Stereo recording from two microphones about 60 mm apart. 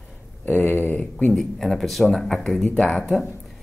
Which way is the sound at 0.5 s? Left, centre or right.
Left.